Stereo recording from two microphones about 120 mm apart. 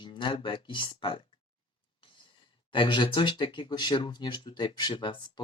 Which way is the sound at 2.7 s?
45° left (ahead or behind).